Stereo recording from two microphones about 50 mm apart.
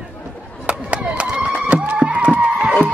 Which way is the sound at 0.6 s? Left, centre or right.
Right.